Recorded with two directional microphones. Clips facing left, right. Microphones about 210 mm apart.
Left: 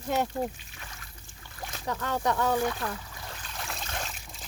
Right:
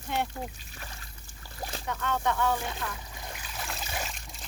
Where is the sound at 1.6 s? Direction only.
30° right (ahead or behind).